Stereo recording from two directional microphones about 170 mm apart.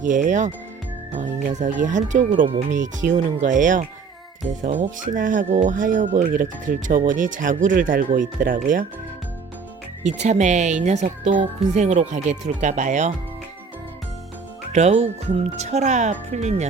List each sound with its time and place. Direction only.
0.0 s speech: 50° right (ahead or behind)
10.0 s speech: 45° right (ahead or behind)
14.7 s speech: 40° right (ahead or behind)